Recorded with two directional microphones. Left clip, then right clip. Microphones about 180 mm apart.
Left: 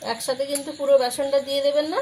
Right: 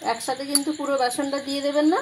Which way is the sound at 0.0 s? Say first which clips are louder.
Even; 20° right (ahead or behind).